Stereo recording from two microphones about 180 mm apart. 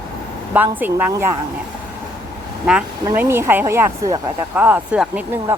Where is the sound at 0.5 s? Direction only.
10° right (ahead or behind).